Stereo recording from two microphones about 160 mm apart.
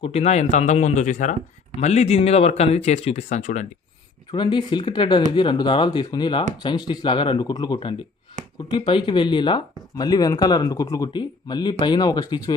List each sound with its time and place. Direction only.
0.0 s speech: 40° left (ahead or behind)
4.3 s speech: 25° left (ahead or behind)
8.4 s a sound: 50° right (ahead or behind)
8.8 s speech: 30° left (ahead or behind)